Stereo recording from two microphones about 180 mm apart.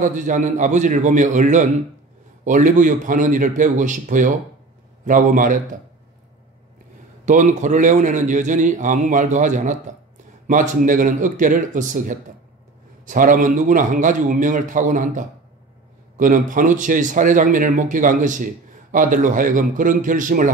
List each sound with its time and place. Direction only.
0.0 s speech: 45° right (ahead or behind)
7.2 s speech: 45° right (ahead or behind)